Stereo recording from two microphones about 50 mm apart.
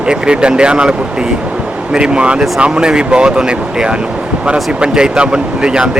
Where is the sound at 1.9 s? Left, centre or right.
Centre.